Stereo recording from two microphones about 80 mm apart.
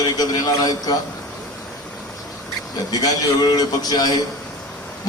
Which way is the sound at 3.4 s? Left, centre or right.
Left.